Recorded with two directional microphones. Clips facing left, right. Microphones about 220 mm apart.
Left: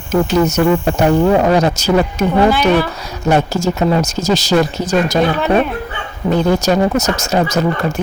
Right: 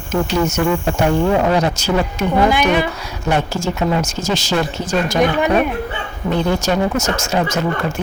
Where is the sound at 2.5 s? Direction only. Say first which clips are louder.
Left 3 dB; 15° right (ahead or behind).